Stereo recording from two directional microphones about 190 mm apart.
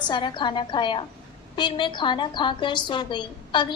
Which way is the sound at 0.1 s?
25° left (ahead or behind).